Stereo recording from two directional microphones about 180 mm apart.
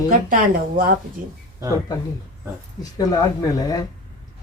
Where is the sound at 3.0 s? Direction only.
20° left (ahead or behind).